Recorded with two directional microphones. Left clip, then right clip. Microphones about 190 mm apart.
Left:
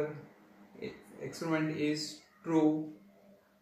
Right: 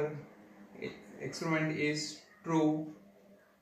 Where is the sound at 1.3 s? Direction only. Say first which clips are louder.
Even; 10° left (ahead or behind).